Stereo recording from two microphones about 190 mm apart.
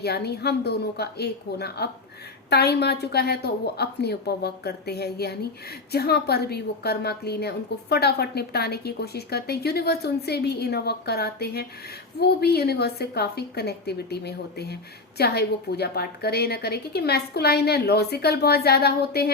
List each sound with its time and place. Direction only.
0.0 s a woman's voice: 60° left (ahead or behind)